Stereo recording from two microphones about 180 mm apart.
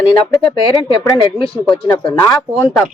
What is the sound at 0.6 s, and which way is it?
Speech, 30° left (ahead or behind).